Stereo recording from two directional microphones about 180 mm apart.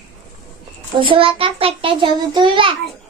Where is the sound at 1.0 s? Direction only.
30° right (ahead or behind).